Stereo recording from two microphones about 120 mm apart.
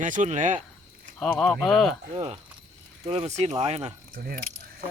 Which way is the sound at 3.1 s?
60° right (ahead or behind).